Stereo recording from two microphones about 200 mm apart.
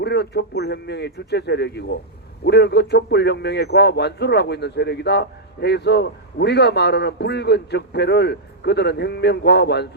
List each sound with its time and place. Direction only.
0.0 s a man's voice: 55° left (ahead or behind)